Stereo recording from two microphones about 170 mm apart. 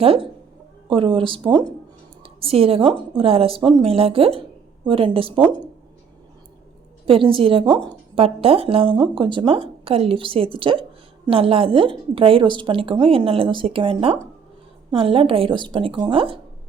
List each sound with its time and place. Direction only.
0.0 s speech: 35° right (ahead or behind)
7.0 s speech: 30° right (ahead or behind)